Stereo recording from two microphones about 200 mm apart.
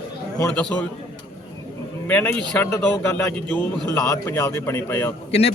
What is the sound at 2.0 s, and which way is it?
A man's voice, 5° left (ahead or behind).